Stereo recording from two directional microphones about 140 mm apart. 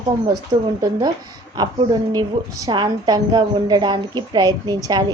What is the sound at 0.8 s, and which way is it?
A woman's voice, 25° right (ahead or behind).